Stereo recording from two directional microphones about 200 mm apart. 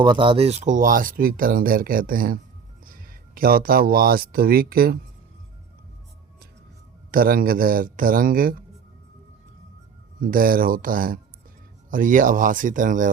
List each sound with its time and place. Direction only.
0.0 s speech: 25° right (ahead or behind); by 4.9 s 50° right (ahead or behind)
7.1 s speech: 45° right (ahead or behind)
10.2 s speech: 45° right (ahead or behind)